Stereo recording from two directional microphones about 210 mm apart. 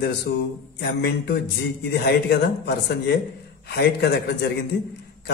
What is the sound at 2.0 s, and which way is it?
A man's voice, 50° left (ahead or behind).